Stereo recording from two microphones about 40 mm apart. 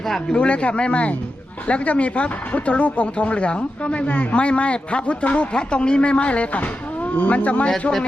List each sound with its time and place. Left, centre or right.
0.3 s speech: left